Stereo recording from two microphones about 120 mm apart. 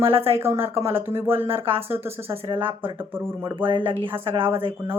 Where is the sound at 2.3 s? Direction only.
50° right (ahead or behind).